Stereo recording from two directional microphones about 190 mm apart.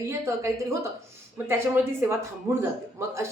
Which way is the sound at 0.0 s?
15° right (ahead or behind).